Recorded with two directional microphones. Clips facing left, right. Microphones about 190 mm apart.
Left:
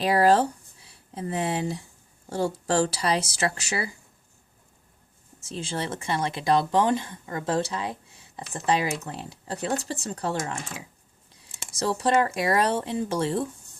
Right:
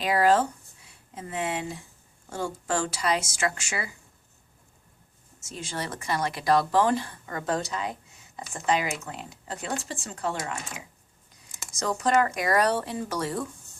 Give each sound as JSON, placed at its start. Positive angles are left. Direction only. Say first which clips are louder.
{"t": 0.0, "sound": "speech", "louder": "left 2 dB", "side_deg": 35}
{"t": 5.4, "sound": "speech", "louder": "left 3 dB", "side_deg": 30}